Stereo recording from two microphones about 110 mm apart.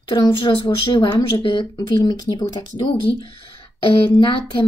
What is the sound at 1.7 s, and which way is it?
Speech, 35° left (ahead or behind).